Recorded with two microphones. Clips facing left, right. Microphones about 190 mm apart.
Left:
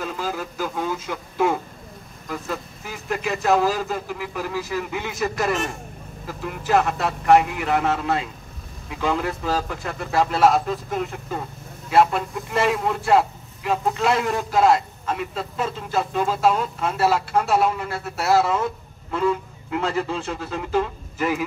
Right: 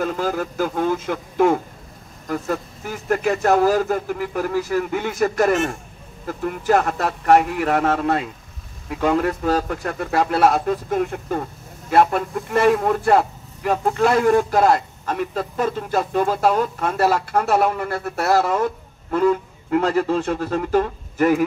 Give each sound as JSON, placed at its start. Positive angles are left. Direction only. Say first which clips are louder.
{"t": 0.0, "sound": "speech", "louder": "right 6 dB", "side_deg": -50}
{"t": 19.7, "sound": "speech", "louder": "right 6 dB", "side_deg": -50}